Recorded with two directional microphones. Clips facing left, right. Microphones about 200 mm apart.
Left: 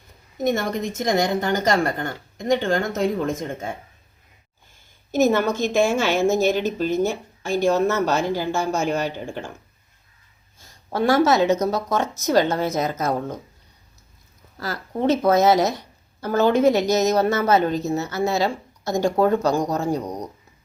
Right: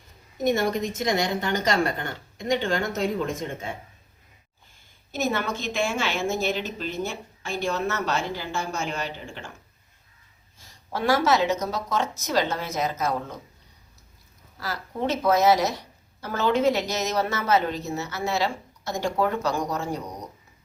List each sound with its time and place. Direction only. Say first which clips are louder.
0.4 s a woman's voice: left 1 dB; 50° left (ahead or behind)
5.1 s a woman's voice: left 8 dB; 45° left (ahead or behind)
10.9 s a woman's voice: left 4 dB; 50° left (ahead or behind)
12.6 s a woman's voice: left 4 dB; 40° left (ahead or behind)
15.2 s a woman's voice: left 2 dB; 50° left (ahead or behind)